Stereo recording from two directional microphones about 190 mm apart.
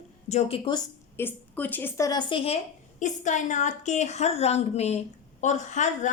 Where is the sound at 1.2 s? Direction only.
10° left (ahead or behind).